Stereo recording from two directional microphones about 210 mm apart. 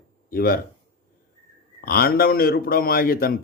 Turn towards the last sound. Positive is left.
turn(degrees=45)  # may be behind; listen again after turning